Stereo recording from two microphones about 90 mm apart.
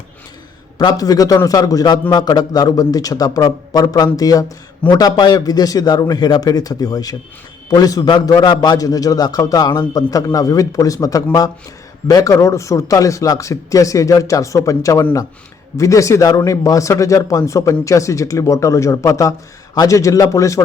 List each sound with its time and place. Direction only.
0.8 s a man's voice: 45° left (ahead or behind)